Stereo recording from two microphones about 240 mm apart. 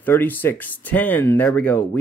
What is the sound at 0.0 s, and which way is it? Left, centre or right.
Speech, centre.